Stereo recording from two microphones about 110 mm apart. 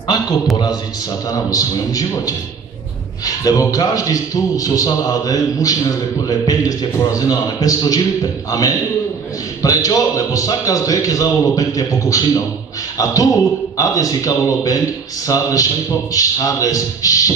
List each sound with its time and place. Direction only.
1.3 s a man's voice: 35° left (ahead or behind)